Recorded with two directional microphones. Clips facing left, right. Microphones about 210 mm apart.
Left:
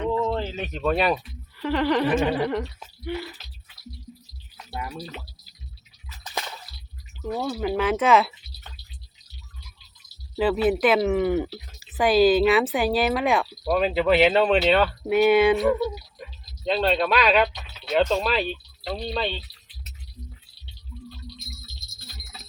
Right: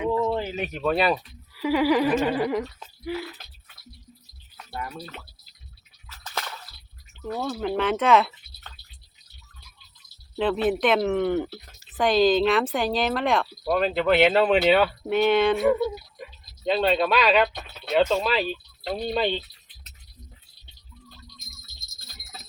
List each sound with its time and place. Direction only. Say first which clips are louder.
0.2 s speech: right 1 dB; 10° right (ahead or behind)
4.5 s music: left 1 dB; 5° left (ahead or behind)
6.1 s slosh: left 1 dB; 15° left (ahead or behind)
7.3 s speech: left 1 dB; 10° left (ahead or behind)
10.3 s speech: left 2 dB; 5° left (ahead or behind)
15.5 s speech: even; 5° right (ahead or behind)
17.5 s a sound: right 1 dB; 55° right (ahead or behind)
17.9 s speech: even; centre (ahead or behind)
19.0 s speech: right 4 dB; 15° right (ahead or behind)
21.9 s jingle bell: right 1 dB; 45° right (ahead or behind)